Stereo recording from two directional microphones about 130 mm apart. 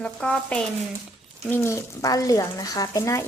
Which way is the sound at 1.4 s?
20° left (ahead or behind).